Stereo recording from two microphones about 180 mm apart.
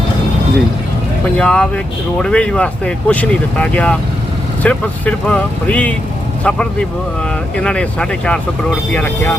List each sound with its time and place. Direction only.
1.4 s speech: 5° left (ahead or behind)